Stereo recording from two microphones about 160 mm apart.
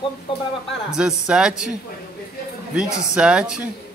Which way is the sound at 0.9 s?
5° right (ahead or behind).